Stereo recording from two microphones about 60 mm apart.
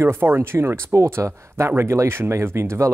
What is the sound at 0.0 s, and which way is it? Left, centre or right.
Speech, right.